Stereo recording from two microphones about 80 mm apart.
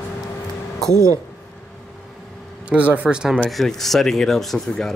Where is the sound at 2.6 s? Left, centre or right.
Centre.